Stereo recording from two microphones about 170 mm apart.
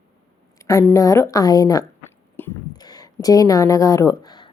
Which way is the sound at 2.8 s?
25° left (ahead or behind).